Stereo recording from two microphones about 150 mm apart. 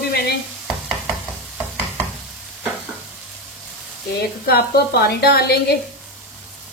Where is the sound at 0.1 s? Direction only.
90° left.